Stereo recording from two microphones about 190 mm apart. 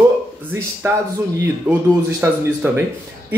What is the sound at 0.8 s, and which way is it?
A man's voice, 15° right (ahead or behind).